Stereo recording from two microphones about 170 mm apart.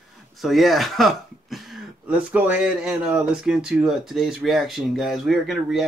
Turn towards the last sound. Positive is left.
turn(degrees=0)  # may be behind; listen again after turning